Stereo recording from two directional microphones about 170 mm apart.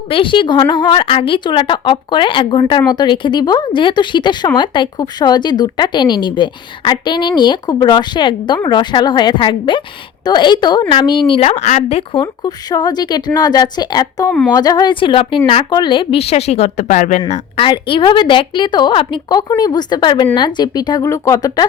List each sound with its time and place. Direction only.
0.1 s a woman's voice: 30° left (ahead or behind)
12.2 s a woman's voice: 25° left (ahead or behind)
14.3 s a woman's voice: 10° left (ahead or behind)
14.5 s a woman's voice: 20° left (ahead or behind); by 17.7 s 40° left (ahead or behind)
17.7 s a woman's voice: 30° left (ahead or behind)